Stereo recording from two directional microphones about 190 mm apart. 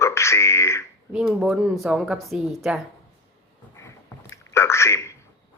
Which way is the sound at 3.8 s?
15° left (ahead or behind).